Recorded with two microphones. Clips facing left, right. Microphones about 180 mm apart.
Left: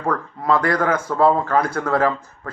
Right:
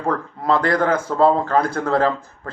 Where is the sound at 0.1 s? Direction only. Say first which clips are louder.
Even; 25° right (ahead or behind).